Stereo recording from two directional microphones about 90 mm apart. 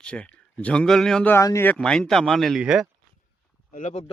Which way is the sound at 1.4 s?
40° left (ahead or behind).